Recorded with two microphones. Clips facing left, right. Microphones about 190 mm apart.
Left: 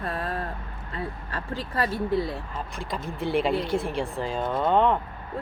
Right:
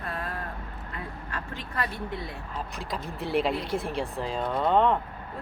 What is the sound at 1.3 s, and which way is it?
Speech, 30° left (ahead or behind).